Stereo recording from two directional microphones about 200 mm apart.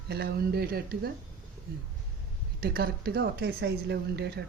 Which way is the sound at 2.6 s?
50° right (ahead or behind).